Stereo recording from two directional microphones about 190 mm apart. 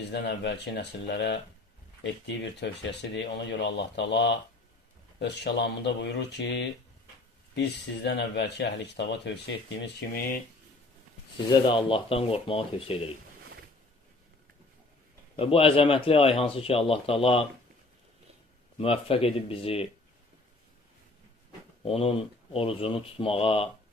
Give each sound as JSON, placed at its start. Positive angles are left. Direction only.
{"t": 0.1, "sound": "speech", "side_deg": 65}
{"t": 11.6, "sound": "a man's voice", "side_deg": 25}
{"t": 15.3, "sound": "a man's voice", "side_deg": 30}
{"t": 18.8, "sound": "speech", "side_deg": 30}
{"t": 21.8, "sound": "a man's voice", "side_deg": 30}